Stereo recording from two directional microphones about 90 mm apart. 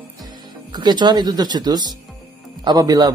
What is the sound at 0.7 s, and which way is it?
A man's voice, 55° right (ahead or behind).